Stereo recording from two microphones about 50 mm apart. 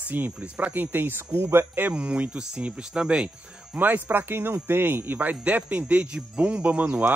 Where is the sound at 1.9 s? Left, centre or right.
Right.